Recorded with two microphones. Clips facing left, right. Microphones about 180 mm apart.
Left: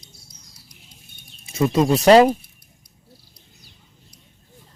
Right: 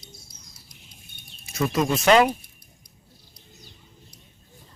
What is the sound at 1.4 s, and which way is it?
Speech, 25° left (ahead or behind).